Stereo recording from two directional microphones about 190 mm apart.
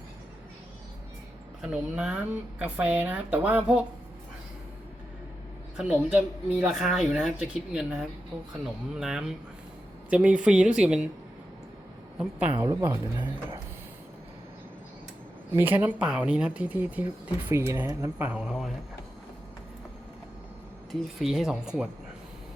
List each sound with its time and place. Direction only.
1.6 s speech: 5° right (ahead or behind)
5.7 s speech: 10° right (ahead or behind)
12.1 s speech: 5° right (ahead or behind)
12.6 s speech: 20° right (ahead or behind)
15.5 s speech: 10° right (ahead or behind)
20.9 s speech: centre (ahead or behind)